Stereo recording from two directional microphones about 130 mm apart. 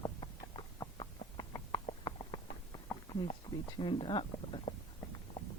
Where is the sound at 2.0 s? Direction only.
35° left (ahead or behind).